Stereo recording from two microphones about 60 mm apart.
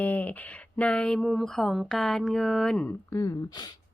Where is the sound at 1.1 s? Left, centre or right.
Centre.